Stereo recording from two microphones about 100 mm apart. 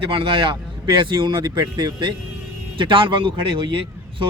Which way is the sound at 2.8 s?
55° right (ahead or behind).